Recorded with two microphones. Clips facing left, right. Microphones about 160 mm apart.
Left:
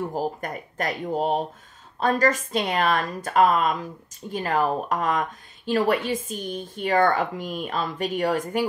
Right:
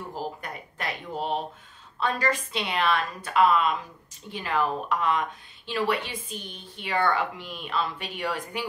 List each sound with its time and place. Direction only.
0.1 s a woman's voice: 45° left (ahead or behind)